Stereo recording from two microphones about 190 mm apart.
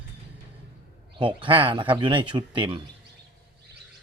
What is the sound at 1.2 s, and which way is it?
Speech, 25° right (ahead or behind).